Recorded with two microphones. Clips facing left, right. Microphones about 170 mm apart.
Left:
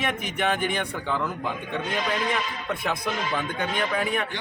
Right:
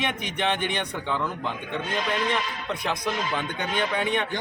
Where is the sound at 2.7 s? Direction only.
5° left (ahead or behind).